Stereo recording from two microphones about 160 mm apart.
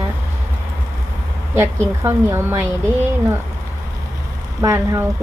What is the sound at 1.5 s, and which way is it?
A woman's voice, 15° right (ahead or behind).